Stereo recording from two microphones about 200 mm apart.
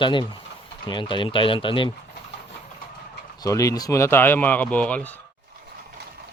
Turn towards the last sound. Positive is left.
turn(degrees=5)  # may be behind; listen again after turning